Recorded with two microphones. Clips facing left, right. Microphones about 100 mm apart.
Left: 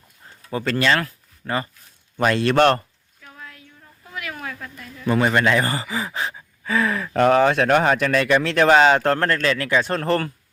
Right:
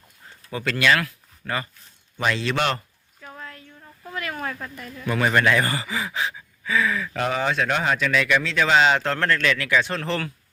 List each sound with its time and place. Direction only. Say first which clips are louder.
0.5 s speech: left 1 dB; 35° left (ahead or behind)
2.1 s speech: left 6 dB; 50° left (ahead or behind)
3.2 s a sound: right 3 dB; 10° right (ahead or behind)
5.0 s speech: left 2 dB; 25° left (ahead or behind); by 8.0 s 50° left (ahead or behind)
8.0 s speech: left 3 dB; 35° left (ahead or behind)
8.4 s speech: left 6 dB; 55° left (ahead or behind)